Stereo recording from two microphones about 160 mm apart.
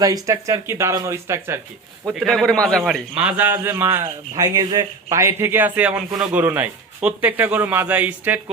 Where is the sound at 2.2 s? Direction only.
5° left (ahead or behind).